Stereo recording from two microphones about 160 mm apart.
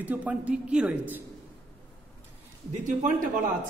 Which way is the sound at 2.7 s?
50° right (ahead or behind).